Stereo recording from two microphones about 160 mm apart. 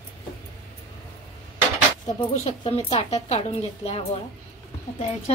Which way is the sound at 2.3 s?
40° left (ahead or behind).